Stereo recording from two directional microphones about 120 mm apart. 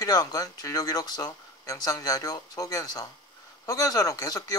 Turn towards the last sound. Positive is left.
turn(degrees=30)  # may be behind; listen again after turning